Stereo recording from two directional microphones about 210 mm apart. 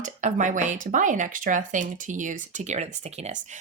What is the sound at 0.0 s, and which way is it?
Speech, 35° right (ahead or behind).